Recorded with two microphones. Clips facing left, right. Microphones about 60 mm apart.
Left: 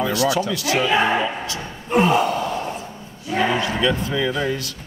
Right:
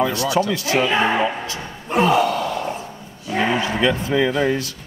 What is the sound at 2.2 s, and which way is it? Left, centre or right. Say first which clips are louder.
Gasp: right 1 dB; left.